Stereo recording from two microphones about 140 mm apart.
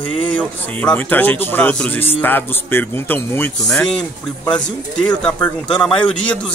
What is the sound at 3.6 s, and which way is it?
A man's voice, 5° left (ahead or behind).